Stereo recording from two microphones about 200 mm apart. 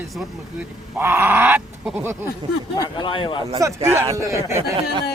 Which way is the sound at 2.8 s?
25° left (ahead or behind).